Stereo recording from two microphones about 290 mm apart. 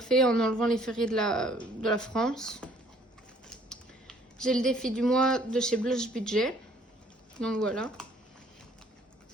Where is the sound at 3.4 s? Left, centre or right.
Centre.